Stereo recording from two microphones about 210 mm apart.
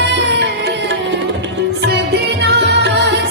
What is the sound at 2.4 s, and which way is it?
Music, 55° right (ahead or behind).